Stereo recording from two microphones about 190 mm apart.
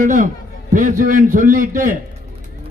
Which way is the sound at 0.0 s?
45° right (ahead or behind).